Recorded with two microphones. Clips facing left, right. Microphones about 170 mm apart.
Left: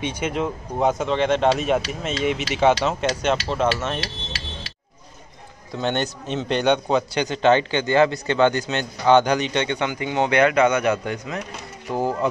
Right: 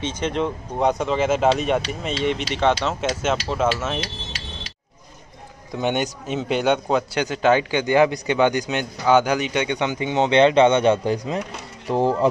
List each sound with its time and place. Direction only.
0.0 s speech: 10° left (ahead or behind)
5.7 s a man's voice: 15° right (ahead or behind); by 12.3 s 30° right (ahead or behind)